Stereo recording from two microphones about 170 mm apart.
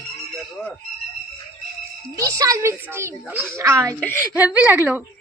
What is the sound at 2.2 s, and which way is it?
A child's voice, 20° right (ahead or behind).